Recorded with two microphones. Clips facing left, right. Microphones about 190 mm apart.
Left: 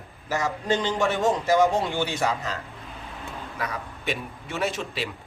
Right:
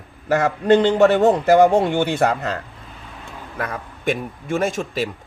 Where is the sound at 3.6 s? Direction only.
50° right (ahead or behind).